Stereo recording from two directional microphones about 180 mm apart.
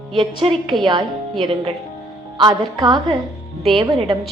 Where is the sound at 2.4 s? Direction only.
25° right (ahead or behind).